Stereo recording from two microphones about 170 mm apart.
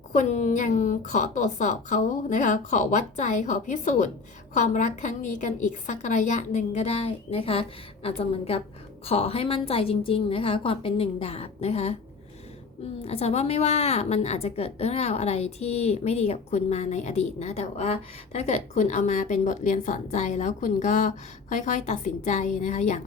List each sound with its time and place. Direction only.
0.1 s a woman's voice: 45° left (ahead or behind)
13.0 s a woman's voice: 35° left (ahead or behind)